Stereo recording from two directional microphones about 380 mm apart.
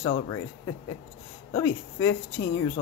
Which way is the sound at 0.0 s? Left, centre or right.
Centre.